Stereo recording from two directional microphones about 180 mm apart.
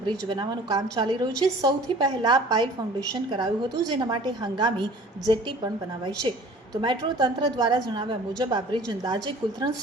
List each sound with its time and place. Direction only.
0.0 s a woman's voice: 25° right (ahead or behind)